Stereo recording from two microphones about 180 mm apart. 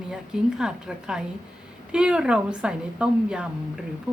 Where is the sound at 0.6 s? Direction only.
5° right (ahead or behind).